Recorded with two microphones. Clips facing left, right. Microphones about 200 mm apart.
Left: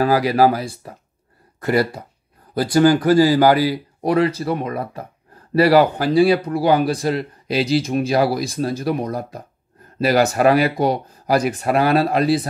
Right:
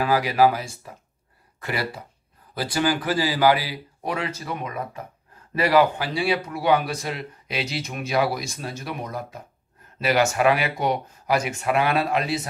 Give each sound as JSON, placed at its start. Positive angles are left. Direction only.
{"t": 0.0, "sound": "speech", "side_deg": 40}